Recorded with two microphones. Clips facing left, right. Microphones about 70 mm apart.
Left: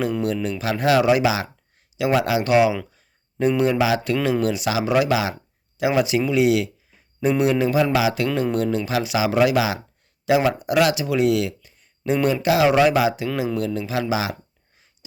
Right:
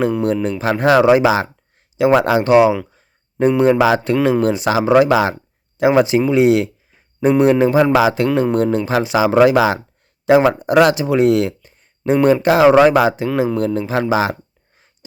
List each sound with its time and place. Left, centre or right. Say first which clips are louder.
0.6 s speech: right 6 dB; right
2.9 s a sound: right 7 dB; right
3.6 s speech: right 8 dB; right